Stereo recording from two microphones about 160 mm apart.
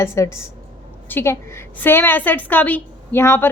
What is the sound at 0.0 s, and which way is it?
A woman's voice, 15° left (ahead or behind).